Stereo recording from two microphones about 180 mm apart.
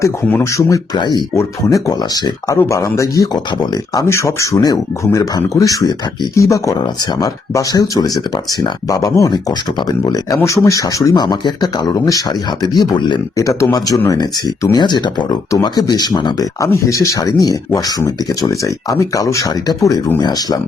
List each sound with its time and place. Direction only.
0.0 s speech: 15° left (ahead or behind)